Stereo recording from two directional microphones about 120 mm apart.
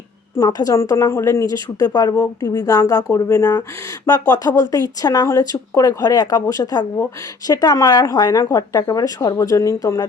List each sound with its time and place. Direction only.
0.3 s a woman's voice: 30° left (ahead or behind)